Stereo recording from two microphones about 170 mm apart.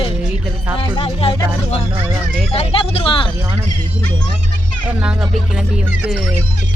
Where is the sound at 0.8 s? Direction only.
30° left (ahead or behind).